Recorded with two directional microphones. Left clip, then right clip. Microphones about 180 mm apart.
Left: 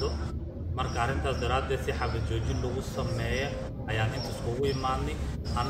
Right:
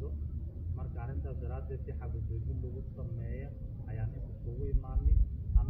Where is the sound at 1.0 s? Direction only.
15° left (ahead or behind).